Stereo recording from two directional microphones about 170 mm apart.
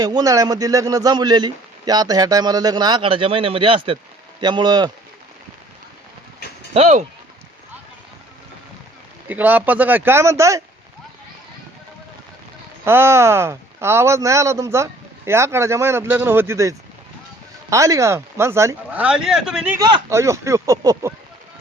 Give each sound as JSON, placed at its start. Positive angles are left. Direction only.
{"t": 0.0, "sound": "a man's voice", "side_deg": -20}
{"t": 6.7, "sound": "speech", "side_deg": -40}
{"t": 9.3, "sound": "speech", "side_deg": -10}
{"t": 12.8, "sound": "speech", "side_deg": -15}
{"t": 19.8, "sound": "speech", "side_deg": -20}